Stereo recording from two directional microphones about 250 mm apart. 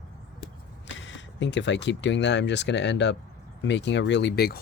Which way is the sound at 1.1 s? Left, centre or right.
Left.